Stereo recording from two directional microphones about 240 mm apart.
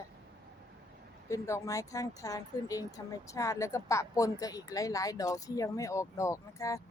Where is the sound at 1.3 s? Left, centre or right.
Centre.